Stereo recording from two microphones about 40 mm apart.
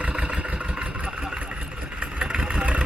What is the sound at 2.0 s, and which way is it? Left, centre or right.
Vehicle, right.